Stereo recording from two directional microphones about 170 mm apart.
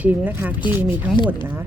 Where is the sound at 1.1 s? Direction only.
25° left (ahead or behind).